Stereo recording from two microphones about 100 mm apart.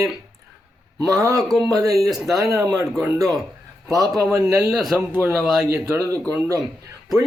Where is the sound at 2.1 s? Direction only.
5° right (ahead or behind).